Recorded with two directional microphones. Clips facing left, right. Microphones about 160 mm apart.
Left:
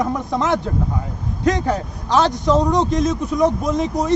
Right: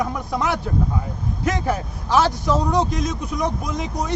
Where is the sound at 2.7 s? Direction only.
Centre (ahead or behind).